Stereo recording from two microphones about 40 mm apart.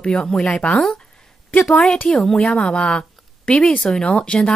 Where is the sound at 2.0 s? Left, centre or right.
Centre.